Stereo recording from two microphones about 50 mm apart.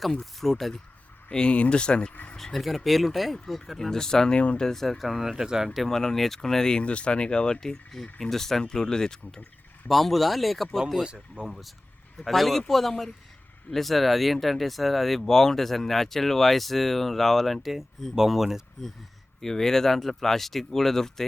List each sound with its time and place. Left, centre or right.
0.0 s speech: centre
1.3 s speech: centre
2.3 s speech: centre
4.4 s speech: left
4.6 s speech: centre
5.4 s speech: centre
5.8 s speech: centre
6.8 s speech: left; by 11.0 s centre
11.0 s speech: centre
12.2 s speech: centre
19.4 s speech: centre